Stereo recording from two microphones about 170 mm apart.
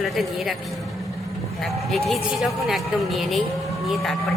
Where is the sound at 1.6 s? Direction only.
Centre (ahead or behind).